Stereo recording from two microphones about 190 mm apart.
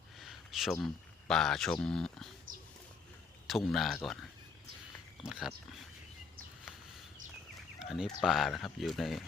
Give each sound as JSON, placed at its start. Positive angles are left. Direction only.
{"t": 0.2, "sound": "a sound", "side_deg": 0}
{"t": 1.3, "sound": "speech", "side_deg": 0}
{"t": 3.4, "sound": "speech", "side_deg": 0}
{"t": 7.8, "sound": "speech", "side_deg": 0}